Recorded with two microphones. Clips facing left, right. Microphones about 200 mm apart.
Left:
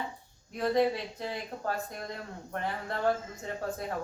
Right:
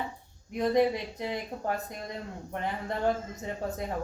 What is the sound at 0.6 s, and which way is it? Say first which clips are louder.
A man's voice: right 2 dB; 15° right (ahead or behind).